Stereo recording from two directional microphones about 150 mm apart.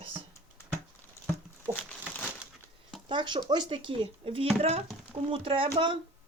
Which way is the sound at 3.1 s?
30° right (ahead or behind).